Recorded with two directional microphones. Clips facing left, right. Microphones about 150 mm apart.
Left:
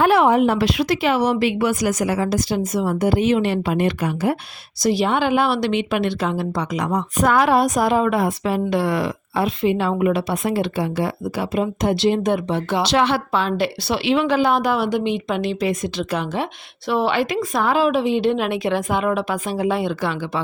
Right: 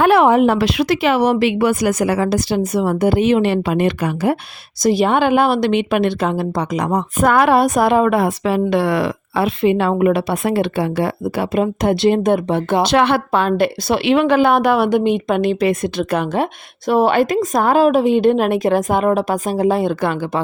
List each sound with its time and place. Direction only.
0.0 s a woman's voice: 65° right (ahead or behind)
4.8 s a woman's voice: 50° right (ahead or behind)